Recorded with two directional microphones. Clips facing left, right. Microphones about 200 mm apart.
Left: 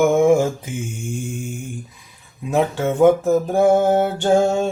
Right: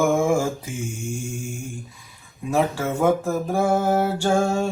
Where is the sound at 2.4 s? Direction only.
20° left (ahead or behind).